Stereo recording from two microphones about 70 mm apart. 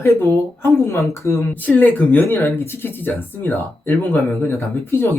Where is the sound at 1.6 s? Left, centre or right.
Left.